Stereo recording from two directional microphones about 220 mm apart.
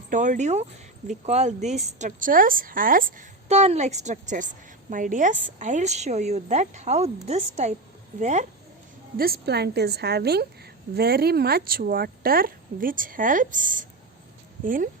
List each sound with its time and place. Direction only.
0.1 s speech: 35° right (ahead or behind)
9.1 s a woman's voice: 45° right (ahead or behind)